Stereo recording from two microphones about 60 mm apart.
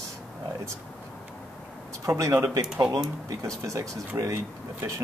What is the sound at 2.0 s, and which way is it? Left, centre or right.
Speech, right.